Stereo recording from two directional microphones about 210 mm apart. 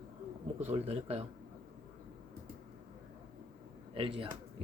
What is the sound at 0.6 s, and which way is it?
Speech, 30° right (ahead or behind).